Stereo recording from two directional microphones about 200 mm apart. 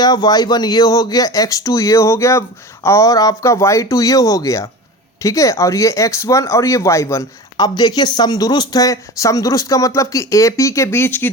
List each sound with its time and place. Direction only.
0.0 s speech: 20° left (ahead or behind)